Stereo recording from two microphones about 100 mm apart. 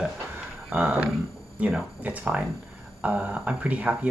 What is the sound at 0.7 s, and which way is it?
Speech, 20° right (ahead or behind).